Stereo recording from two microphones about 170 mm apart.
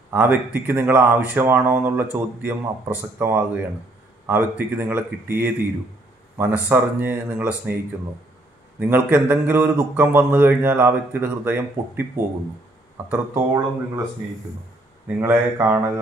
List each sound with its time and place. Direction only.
0.1 s a man's voice: 10° right (ahead or behind)
8.7 s a man's voice: 10° right (ahead or behind)
13.1 s speech: 20° right (ahead or behind)
15.0 s a man's voice: 15° right (ahead or behind)